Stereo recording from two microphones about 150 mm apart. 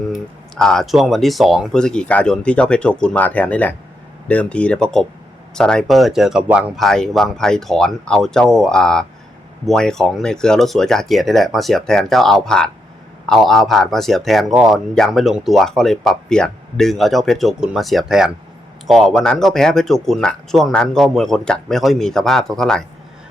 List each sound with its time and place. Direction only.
0.1 s speech: 5° left (ahead or behind)